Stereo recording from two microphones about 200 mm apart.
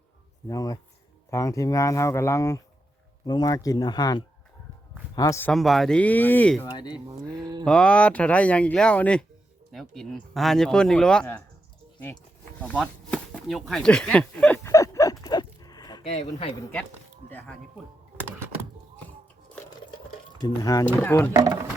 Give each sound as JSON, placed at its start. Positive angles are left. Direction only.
{"t": 0.4, "sound": "speech", "side_deg": 20}
{"t": 5.5, "sound": "speech", "side_deg": 0}
{"t": 6.7, "sound": "speech", "side_deg": 20}
{"t": 7.6, "sound": "speech", "side_deg": 5}
{"t": 12.6, "sound": "a sound", "side_deg": 5}
{"t": 16.0, "sound": "speech", "side_deg": 30}
{"t": 17.3, "sound": "speech", "side_deg": 5}
{"t": 18.2, "sound": "music", "side_deg": -10}
{"t": 20.4, "sound": "speech", "side_deg": 20}
{"t": 21.3, "sound": "speech", "side_deg": -15}